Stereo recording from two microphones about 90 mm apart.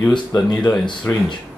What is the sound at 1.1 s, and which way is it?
Speech, 25° left (ahead or behind).